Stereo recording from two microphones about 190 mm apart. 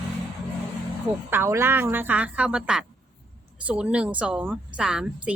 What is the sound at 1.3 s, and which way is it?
A woman's voice, 15° right (ahead or behind).